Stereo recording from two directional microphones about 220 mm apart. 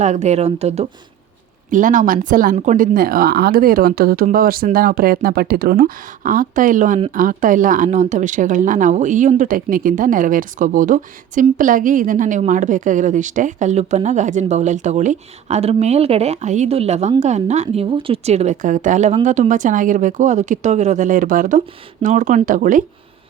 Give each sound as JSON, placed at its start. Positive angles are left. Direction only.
{"t": 0.0, "sound": "speech", "side_deg": -30}